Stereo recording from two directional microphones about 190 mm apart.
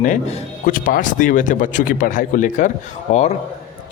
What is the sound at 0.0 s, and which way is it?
A man's voice, 40° left (ahead or behind).